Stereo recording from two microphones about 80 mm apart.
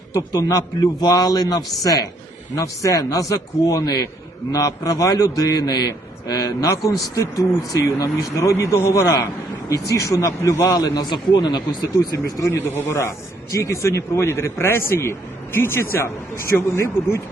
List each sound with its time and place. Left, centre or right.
0.1 s a man's voice: left
10.7 s a man's voice: left
11.9 s speech: left